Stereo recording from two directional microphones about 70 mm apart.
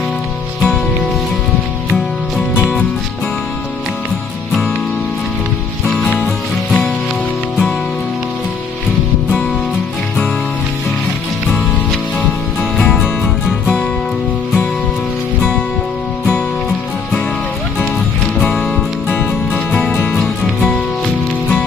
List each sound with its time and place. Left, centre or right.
6.2 s music: centre
12.9 s music: centre
19.0 s music: left
20.2 s music: centre